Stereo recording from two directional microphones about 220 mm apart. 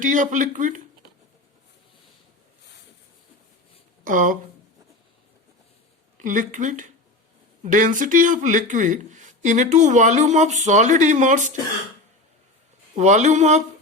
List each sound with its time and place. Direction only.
0.0 s speech: 35° right (ahead or behind)
4.0 s speech: 35° right (ahead or behind)
6.1 s speech: 35° right (ahead or behind)
13.0 s speech: 30° right (ahead or behind)